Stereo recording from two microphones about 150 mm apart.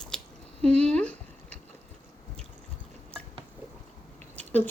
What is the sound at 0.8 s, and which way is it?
Speech, 5° left (ahead or behind).